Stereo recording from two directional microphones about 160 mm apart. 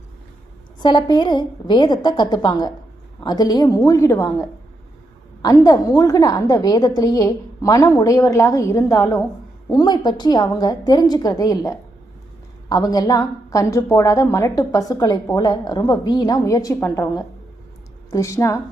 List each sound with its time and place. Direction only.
0.8 s a woman's voice: 30° left (ahead or behind)